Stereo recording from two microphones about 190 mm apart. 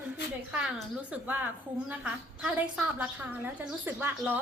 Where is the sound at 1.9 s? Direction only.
5° right (ahead or behind).